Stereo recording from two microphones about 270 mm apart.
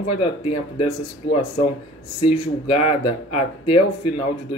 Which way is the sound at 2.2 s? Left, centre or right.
Left.